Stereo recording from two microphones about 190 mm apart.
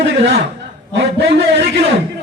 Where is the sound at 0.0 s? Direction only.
60° right (ahead or behind).